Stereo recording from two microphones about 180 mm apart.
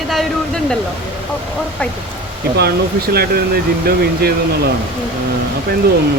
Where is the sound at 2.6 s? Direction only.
60° right (ahead or behind).